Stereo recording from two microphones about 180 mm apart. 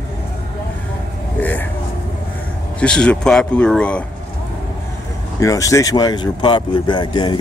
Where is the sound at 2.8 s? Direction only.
5° left (ahead or behind).